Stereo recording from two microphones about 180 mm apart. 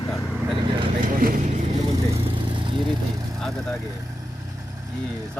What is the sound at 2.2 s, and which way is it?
Vehicle, 30° right (ahead or behind).